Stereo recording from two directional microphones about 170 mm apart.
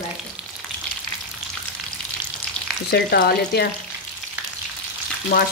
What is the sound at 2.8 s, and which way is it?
Frying, 65° left (ahead or behind).